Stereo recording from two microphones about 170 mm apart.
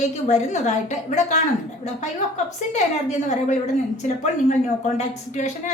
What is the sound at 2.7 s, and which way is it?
Speech, 45° left (ahead or behind).